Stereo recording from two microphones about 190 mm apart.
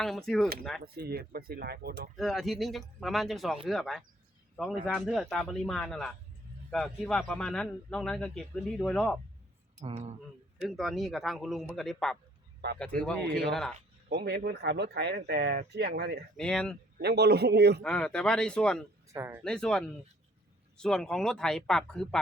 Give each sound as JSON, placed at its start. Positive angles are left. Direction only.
{"t": 0.0, "sound": "a man's voice", "side_deg": 0}
{"t": 0.8, "sound": "speech", "side_deg": -55}
{"t": 2.1, "sound": "a man's voice", "side_deg": 0}
{"t": 9.8, "sound": "speech", "side_deg": -35}
{"t": 10.6, "sound": "a man's voice", "side_deg": 0}
{"t": 14.1, "sound": "speech", "side_deg": -60}
{"t": 16.4, "sound": "a man's voice", "side_deg": 5}
{"t": 17.0, "sound": "speech", "side_deg": -60}
{"t": 17.8, "sound": "a man's voice", "side_deg": 5}
{"t": 19.1, "sound": "speech", "side_deg": -15}
{"t": 19.5, "sound": "a man's voice", "side_deg": 5}